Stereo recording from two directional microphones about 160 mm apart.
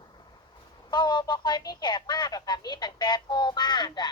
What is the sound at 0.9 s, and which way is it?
Speech, 25° left (ahead or behind).